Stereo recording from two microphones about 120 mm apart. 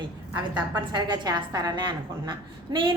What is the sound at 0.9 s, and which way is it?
A woman's voice, 40° right (ahead or behind).